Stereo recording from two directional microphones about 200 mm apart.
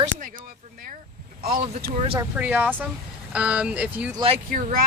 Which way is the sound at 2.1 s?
10° right (ahead or behind).